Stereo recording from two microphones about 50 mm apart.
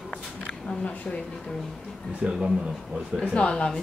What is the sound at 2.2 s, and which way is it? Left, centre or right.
Speech, centre.